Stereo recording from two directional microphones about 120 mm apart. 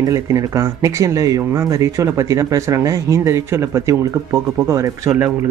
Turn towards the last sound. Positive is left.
turn(degrees=-25)  # may be behind; listen again after turning